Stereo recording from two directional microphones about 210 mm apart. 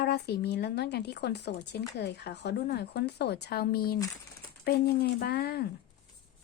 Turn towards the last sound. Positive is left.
turn(degrees=50)  # may be behind; listen again after turning